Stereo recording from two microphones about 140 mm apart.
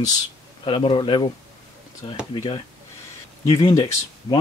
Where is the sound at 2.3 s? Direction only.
35° left (ahead or behind).